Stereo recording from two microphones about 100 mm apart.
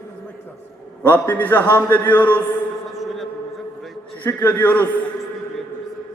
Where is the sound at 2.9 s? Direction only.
Centre (ahead or behind).